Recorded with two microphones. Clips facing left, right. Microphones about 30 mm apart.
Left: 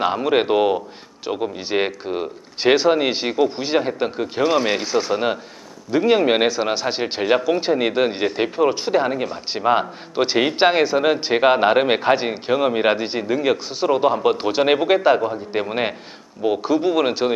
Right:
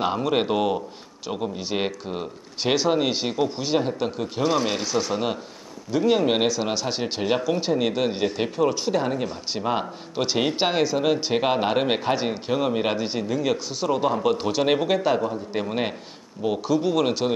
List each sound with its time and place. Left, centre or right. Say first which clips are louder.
0.0 s speech: left 4 dB; left